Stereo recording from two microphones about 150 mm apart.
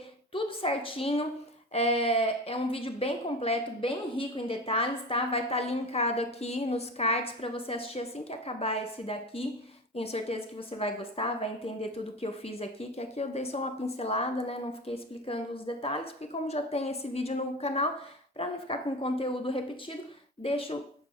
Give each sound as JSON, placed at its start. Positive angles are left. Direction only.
{"t": 0.3, "sound": "a woman's voice", "side_deg": 40}